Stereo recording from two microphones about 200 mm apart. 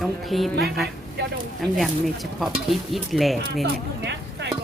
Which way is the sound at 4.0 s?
60° right (ahead or behind).